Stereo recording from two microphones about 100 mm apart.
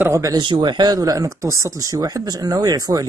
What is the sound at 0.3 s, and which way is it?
Speech, 50° right (ahead or behind).